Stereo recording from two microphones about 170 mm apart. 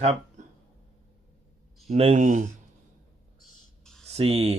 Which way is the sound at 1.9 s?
40° right (ahead or behind).